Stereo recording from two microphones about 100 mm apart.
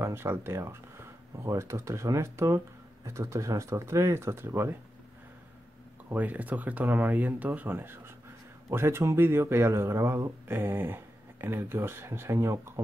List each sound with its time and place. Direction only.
0.0 s speech: 25° right (ahead or behind)
6.0 s speech: 15° right (ahead or behind)